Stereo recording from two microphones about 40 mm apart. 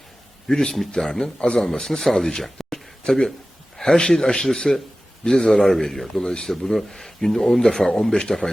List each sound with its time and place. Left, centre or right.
0.4 s speech: centre
2.4 s a sound: centre
3.8 s speech: centre